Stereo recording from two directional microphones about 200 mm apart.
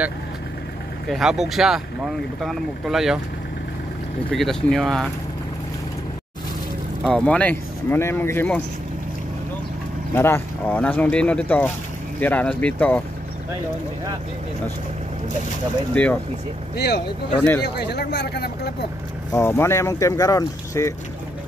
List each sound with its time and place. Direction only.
1.0 s speech: centre (ahead or behind)
4.3 s speech: centre (ahead or behind)
7.0 s speech: centre (ahead or behind)
10.1 s speech: 10° left (ahead or behind)
15.9 s speech: 5° left (ahead or behind)
16.7 s speech: 55° left (ahead or behind)
19.3 s speech: 15° left (ahead or behind)